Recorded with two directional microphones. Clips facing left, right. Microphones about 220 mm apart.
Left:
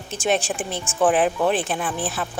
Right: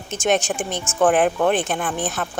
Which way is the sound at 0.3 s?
30° left (ahead or behind).